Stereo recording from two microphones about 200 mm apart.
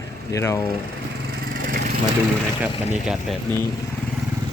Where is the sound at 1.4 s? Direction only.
50° right (ahead or behind).